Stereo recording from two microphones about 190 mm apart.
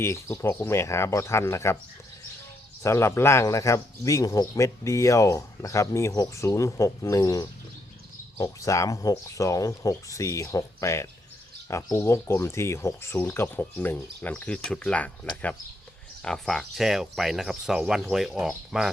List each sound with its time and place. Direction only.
0.0 s a man's voice: 15° left (ahead or behind)
2.8 s a man's voice: 15° left (ahead or behind); by 18.9 s centre (ahead or behind)